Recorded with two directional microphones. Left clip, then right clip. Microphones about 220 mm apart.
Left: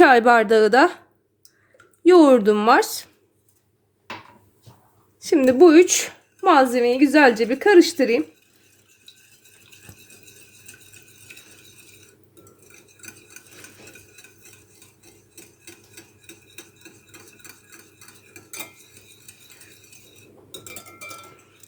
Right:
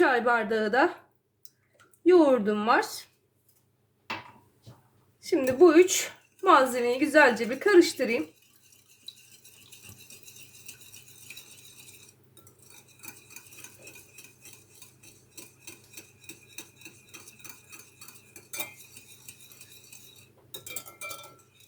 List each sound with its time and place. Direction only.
0.0 s a woman's voice: 45° left (ahead or behind)
2.0 s a woman's voice: 45° left (ahead or behind)
5.2 s a woman's voice: 45° left (ahead or behind)